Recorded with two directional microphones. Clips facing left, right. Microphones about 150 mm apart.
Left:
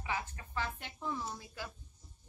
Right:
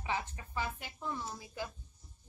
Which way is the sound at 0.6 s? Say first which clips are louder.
Right 1 dB; 10° right (ahead or behind).